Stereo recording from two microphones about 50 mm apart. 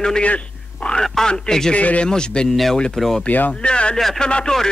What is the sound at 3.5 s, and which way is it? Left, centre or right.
Speech, left.